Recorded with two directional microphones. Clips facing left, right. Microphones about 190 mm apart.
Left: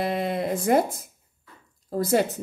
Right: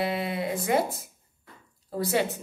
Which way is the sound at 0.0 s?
45° left (ahead or behind).